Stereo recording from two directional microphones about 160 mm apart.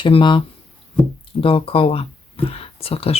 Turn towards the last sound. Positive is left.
turn(degrees=35)  # may be behind; listen again after turning